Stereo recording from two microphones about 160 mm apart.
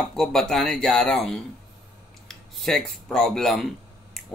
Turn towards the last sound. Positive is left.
turn(degrees=0)  # may be behind; listen again after turning